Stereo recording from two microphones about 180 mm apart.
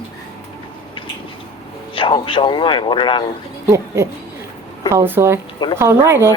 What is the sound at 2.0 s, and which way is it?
A man's voice, 30° left (ahead or behind).